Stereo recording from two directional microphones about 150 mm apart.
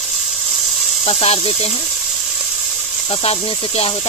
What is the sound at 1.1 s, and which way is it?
Speech, 40° left (ahead or behind).